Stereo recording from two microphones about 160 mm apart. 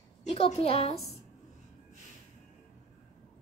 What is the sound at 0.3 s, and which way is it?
Speech, 40° left (ahead or behind).